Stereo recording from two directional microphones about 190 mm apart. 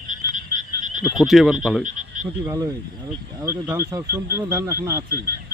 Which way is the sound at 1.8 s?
40° right (ahead or behind).